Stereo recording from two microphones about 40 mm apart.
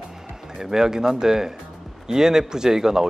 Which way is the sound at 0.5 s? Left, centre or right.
Centre.